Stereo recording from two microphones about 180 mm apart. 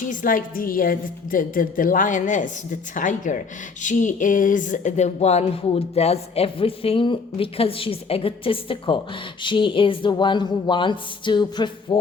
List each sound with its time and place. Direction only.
0.1 s a woman's voice: 50° left (ahead or behind); by 11.9 s 25° left (ahead or behind)